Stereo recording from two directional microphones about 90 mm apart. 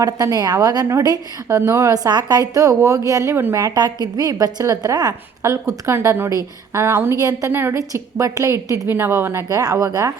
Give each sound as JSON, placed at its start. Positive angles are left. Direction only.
{"t": 0.0, "sound": "a woman's voice", "side_deg": -40}
{"t": 1.5, "sound": "a woman's voice", "side_deg": -30}
{"t": 1.9, "sound": "a woman's voice", "side_deg": -50}
{"t": 3.8, "sound": "a woman's voice", "side_deg": -45}
{"t": 7.2, "sound": "a woman's voice", "side_deg": -40}
{"t": 7.5, "sound": "a woman's voice", "side_deg": -25}
{"t": 7.8, "sound": "a woman's voice", "side_deg": -35}
{"t": 9.5, "sound": "a woman's voice", "side_deg": -40}